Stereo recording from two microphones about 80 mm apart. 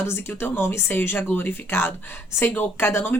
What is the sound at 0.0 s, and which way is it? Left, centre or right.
Speech, left.